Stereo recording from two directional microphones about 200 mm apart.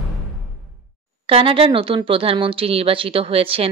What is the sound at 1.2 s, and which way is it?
Speech, 25° right (ahead or behind).